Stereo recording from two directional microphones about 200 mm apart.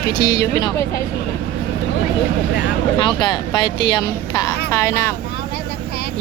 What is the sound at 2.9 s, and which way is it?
Speech, 25° left (ahead or behind).